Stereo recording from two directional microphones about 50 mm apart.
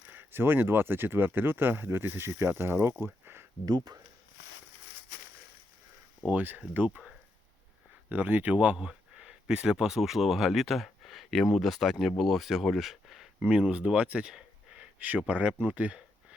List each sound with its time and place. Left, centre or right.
0.1 s speech: right
6.2 s speech: centre
6.7 s speech: right
8.1 s speech: right
8.5 s speech: centre
10.8 s a sound: centre
11.5 s speech: centre
13.5 s speech: centre
14.3 s a sound: centre
15.3 s speech: right